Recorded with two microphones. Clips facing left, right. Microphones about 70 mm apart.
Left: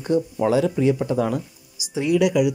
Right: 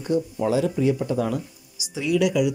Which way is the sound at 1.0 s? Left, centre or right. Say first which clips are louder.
Left 2 dB; left.